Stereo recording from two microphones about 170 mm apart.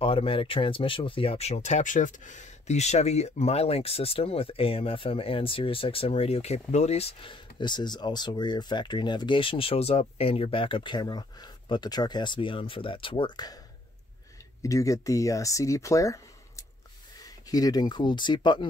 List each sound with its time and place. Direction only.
0.0 s speech: 35° left (ahead or behind)
14.6 s speech: 20° left (ahead or behind)